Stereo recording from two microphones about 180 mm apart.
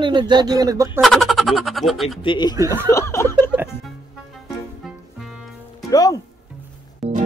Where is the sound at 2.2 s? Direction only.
25° left (ahead or behind).